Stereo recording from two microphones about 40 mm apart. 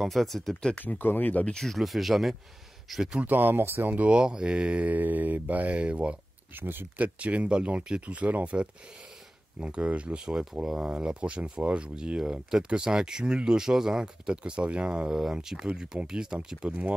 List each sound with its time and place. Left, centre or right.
0.0 s speech: centre
0.7 s speech: left
1.8 s speech: centre
3.3 s speech: right
4.1 s mantra: right
6.5 s speech: right
7.0 s mantra: right
9.8 s speech: right; by 16.3 s centre
16.6 s mantra: right